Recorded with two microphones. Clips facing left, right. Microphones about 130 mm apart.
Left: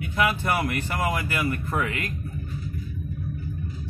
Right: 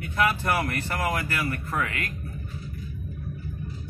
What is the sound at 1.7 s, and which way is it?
Speech, 25° left (ahead or behind).